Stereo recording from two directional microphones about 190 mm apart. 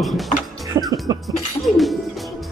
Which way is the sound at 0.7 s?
25° right (ahead or behind).